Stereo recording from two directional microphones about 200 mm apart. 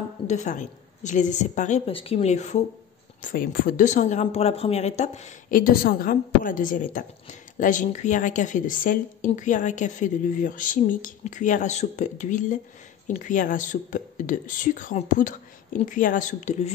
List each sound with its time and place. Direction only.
0.3 s speech: 35° left (ahead or behind)